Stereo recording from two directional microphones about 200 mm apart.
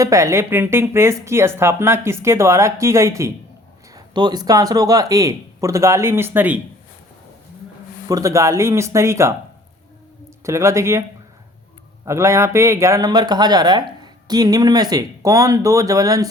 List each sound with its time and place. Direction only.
0.0 s speech: 15° right (ahead or behind)
8.0 s speech: 15° right (ahead or behind)
10.4 s speech: 15° right (ahead or behind)
12.0 s speech: 15° right (ahead or behind)